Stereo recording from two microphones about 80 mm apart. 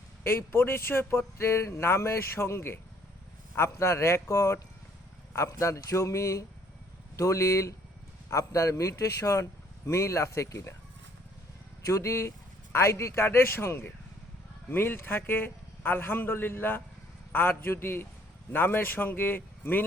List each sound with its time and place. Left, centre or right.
0.3 s speech: left
11.8 s a man's voice: left